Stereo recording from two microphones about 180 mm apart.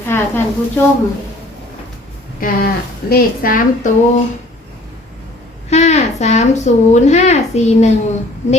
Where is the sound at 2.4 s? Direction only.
55° left (ahead or behind).